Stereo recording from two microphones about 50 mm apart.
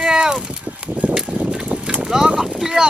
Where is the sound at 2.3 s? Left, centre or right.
Centre.